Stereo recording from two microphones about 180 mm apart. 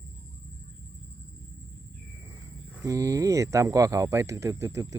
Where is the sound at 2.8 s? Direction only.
20° right (ahead or behind).